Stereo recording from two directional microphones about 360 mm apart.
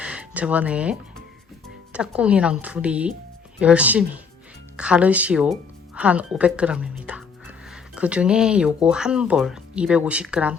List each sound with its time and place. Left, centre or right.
0.0 s speech: centre